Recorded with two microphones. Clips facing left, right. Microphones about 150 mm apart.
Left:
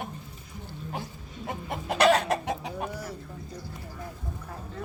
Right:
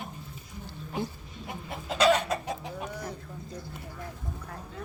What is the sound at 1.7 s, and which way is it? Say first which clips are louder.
Chicken: left 2 dB; 65° left (ahead or behind).